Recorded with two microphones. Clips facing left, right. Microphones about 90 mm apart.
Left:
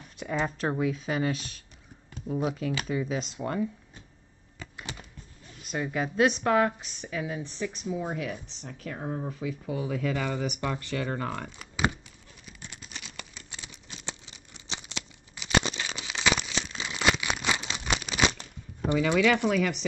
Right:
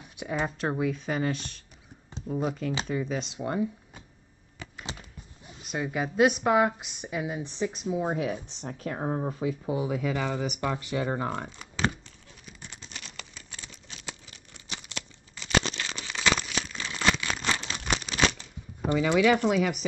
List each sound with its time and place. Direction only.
0.2 s speech: 10° right (ahead or behind)
5.7 s a woman's voice: 5° right (ahead or behind); by 8.6 s 25° right (ahead or behind)
8.6 s speech: 40° right (ahead or behind)
9.8 s a woman's voice: 10° right (ahead or behind)
12.8 s crumpling: 15° left (ahead or behind)
14.0 s tearing: 20° left (ahead or behind)
19.0 s a woman's voice: 15° right (ahead or behind)